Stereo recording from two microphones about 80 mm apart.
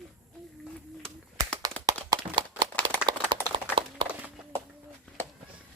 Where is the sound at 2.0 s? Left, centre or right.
Right.